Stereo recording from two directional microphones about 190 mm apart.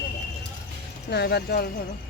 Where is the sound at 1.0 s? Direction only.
60° left (ahead or behind).